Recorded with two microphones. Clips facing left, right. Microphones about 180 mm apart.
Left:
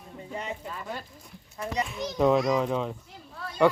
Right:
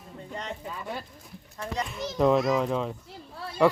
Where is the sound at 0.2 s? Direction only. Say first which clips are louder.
Left 1 dB; 5° left (ahead or behind).